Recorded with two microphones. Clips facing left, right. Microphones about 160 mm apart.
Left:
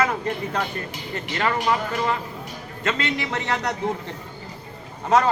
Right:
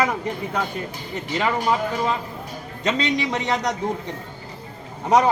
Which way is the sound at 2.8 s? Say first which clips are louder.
Right 3 dB; 15° right (ahead or behind).